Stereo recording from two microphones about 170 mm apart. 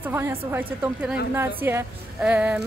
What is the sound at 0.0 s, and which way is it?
A woman's voice, 15° right (ahead or behind).